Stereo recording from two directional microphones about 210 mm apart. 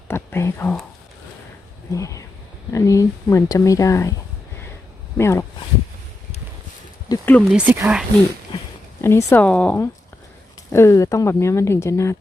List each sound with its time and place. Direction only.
0.1 s speech: 10° left (ahead or behind)
1.9 s speech: 15° left (ahead or behind)
5.1 s speech: 10° left (ahead or behind)
7.1 s speech: 10° left (ahead or behind)
7.5 s speech: 10° right (ahead or behind)
9.0 s speech: 10° left (ahead or behind)